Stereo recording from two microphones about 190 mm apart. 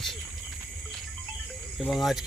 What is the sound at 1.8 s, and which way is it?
Speech, centre (ahead or behind).